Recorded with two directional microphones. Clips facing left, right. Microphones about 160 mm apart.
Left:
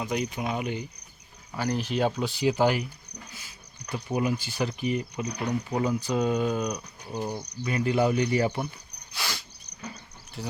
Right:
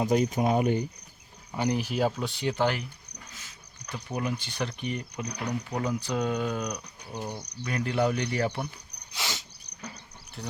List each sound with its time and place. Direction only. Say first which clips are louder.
0.0 s speech: right 5 dB; 40° right (ahead or behind)
1.5 s speech: even; 15° right (ahead or behind); by 2.8 s 10° left (ahead or behind)
3.9 s speech: left 5 dB; 10° left (ahead or behind)
9.1 s a sound: even; 20° right (ahead or behind)
10.4 s speech: left 3 dB; centre (ahead or behind)